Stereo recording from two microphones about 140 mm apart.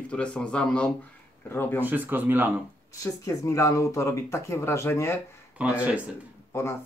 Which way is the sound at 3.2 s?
20° left (ahead or behind).